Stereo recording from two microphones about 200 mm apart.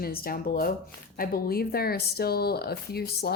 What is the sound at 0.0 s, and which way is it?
Speech, 50° left (ahead or behind).